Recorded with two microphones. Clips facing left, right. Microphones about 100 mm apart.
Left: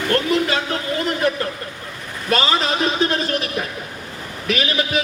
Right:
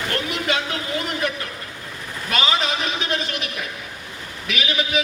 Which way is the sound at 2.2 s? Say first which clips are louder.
Left 3 dB; 35° left (ahead or behind).